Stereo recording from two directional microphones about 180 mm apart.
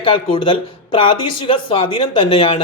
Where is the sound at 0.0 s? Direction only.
30° left (ahead or behind).